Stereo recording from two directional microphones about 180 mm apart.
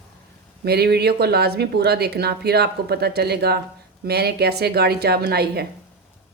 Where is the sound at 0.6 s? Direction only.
60° right (ahead or behind).